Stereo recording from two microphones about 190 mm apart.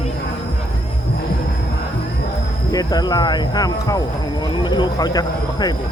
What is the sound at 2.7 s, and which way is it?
Speech, 20° left (ahead or behind).